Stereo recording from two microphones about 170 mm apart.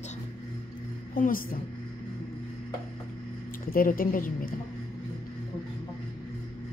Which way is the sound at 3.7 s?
55° left (ahead or behind).